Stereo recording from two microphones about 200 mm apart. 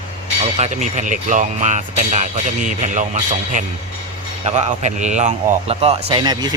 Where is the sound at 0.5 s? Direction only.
35° right (ahead or behind).